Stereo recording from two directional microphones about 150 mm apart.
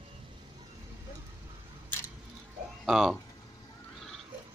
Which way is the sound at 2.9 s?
Centre (ahead or behind).